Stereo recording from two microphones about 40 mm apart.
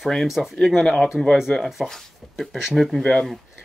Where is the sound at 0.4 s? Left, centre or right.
Centre.